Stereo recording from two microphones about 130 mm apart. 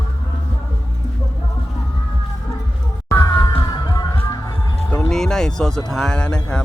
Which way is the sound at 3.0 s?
25° left (ahead or behind).